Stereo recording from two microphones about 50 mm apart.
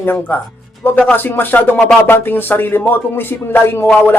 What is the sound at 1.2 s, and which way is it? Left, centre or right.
A man's voice, left.